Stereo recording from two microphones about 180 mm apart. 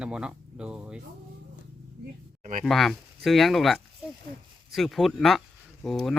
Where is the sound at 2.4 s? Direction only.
45° right (ahead or behind).